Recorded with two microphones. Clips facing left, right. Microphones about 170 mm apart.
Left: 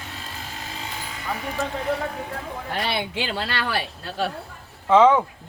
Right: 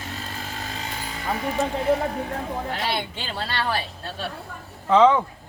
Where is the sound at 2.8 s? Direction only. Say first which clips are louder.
Left 2 dB; 85° left.